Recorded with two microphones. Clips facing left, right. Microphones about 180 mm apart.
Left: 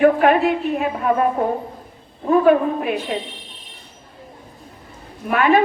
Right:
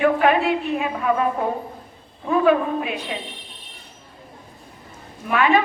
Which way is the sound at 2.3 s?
45° left (ahead or behind).